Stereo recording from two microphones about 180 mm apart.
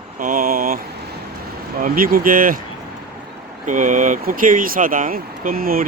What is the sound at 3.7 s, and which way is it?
Speech, 45° right (ahead or behind).